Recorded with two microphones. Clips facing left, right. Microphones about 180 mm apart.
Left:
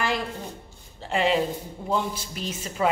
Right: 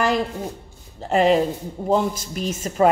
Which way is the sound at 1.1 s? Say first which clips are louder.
Right 6 dB; 45° right (ahead or behind).